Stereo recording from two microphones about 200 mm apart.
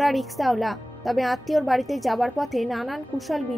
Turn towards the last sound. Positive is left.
turn(degrees=0)  # may be behind; listen again after turning